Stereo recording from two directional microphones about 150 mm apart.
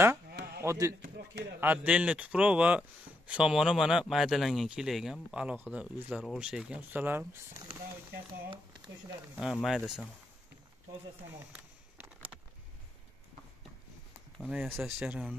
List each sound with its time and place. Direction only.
0.6 s a man's voice: 20° right (ahead or behind)
9.3 s speech: 5° right (ahead or behind)
11.5 s a sound: 10° right (ahead or behind)
14.5 s speech: centre (ahead or behind)